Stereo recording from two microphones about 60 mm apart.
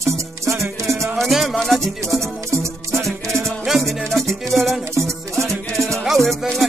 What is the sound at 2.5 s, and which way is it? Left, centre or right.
Music, right.